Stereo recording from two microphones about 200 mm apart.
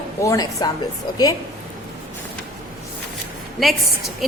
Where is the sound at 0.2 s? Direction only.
15° left (ahead or behind).